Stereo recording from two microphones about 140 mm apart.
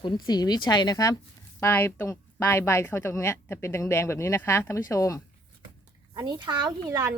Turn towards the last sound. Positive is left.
turn(degrees=-20)  # may be behind; listen again after turning